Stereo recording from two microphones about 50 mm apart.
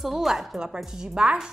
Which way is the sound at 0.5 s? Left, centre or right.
Centre.